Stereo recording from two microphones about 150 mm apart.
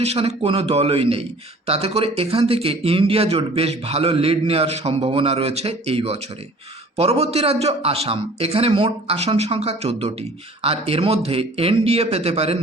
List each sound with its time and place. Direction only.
0.0 s a man's voice: 45° right (ahead or behind)